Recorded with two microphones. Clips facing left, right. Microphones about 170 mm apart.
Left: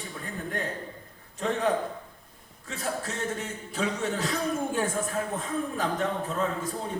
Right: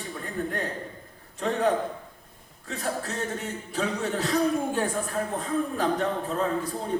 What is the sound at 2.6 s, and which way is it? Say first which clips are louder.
A man's voice: right 2 dB; 40° right (ahead or behind).